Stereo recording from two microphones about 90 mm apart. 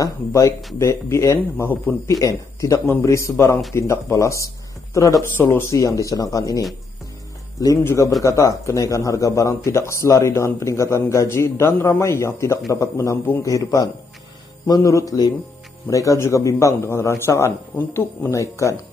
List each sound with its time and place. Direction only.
0.0 s a man's voice: 35° left (ahead or behind)
7.8 s a man's voice: 30° left (ahead or behind)
17.7 s speech: 20° left (ahead or behind)
18.3 s a man's voice: 35° left (ahead or behind)